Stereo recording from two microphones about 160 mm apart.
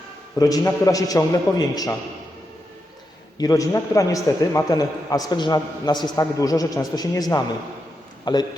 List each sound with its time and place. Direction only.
0.3 s a man's voice: 25° left (ahead or behind)
3.3 s a man's voice: 20° left (ahead or behind)